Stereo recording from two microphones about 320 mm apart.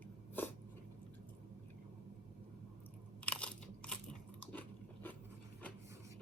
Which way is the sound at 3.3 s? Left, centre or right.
Centre.